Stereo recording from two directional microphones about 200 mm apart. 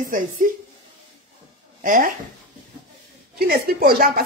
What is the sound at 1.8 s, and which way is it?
Speech, 45° right (ahead or behind).